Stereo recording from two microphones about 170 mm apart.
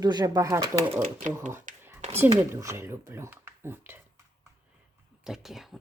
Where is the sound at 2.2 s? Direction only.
15° right (ahead or behind).